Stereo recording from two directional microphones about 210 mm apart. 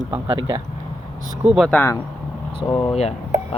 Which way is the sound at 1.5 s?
Centre (ahead or behind).